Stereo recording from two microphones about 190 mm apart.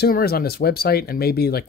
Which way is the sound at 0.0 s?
55° left (ahead or behind).